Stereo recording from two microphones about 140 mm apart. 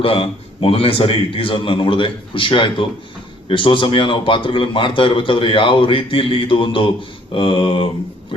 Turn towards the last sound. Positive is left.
turn(degrees=35)  # may be behind; listen again after turning